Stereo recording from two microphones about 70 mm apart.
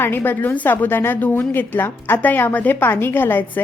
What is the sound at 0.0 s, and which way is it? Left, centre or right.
A woman's voice, left.